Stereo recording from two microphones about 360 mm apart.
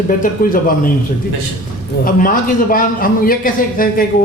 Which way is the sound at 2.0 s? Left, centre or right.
Left.